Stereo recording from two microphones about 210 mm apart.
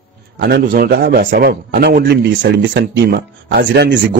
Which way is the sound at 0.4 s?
50° right (ahead or behind).